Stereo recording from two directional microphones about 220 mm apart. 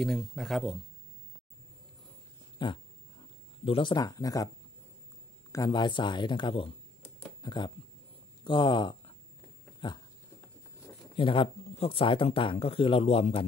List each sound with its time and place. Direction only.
0.0 s speech: centre (ahead or behind)
2.6 s dog: 20° left (ahead or behind)
3.6 s speech: 25° left (ahead or behind)
5.5 s speech: 20° left (ahead or behind)